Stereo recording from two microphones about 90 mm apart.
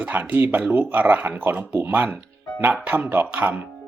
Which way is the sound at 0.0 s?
20° right (ahead or behind).